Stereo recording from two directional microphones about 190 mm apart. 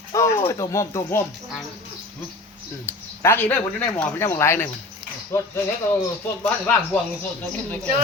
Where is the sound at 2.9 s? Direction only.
10° left (ahead or behind).